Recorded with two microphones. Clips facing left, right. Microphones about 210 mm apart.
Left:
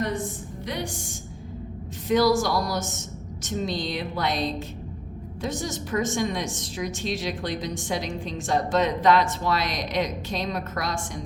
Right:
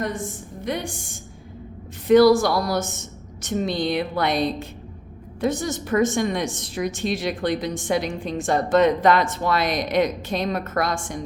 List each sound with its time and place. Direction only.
0.6 s a woman's voice: 50° right (ahead or behind)
2.0 s a woman's voice: 60° right (ahead or behind)